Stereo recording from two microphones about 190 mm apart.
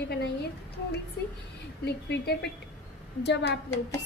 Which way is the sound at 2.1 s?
65° left (ahead or behind).